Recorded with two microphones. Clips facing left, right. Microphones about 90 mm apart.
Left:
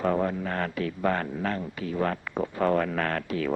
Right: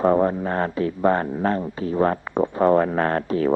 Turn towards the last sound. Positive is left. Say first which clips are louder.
# right 7 dB
turn(degrees=-35)  # may be behind; listen again after turning